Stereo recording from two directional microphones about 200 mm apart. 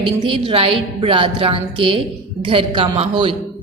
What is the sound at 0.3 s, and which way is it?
A woman's voice, 25° right (ahead or behind).